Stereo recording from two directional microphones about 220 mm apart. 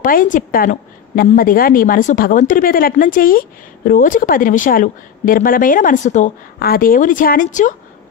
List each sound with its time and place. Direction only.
0.0 s a woman's voice: 40° left (ahead or behind)